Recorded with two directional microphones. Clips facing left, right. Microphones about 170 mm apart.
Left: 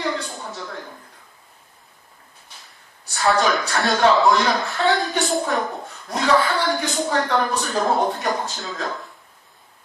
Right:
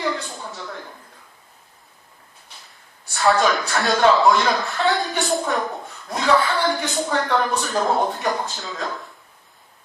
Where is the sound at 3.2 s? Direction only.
Centre (ahead or behind).